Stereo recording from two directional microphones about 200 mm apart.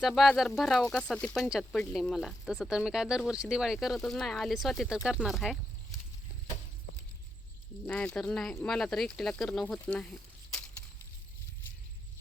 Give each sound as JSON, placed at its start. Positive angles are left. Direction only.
{"t": 0.0, "sound": "speech", "side_deg": 0}
{"t": 7.9, "sound": "speech", "side_deg": 5}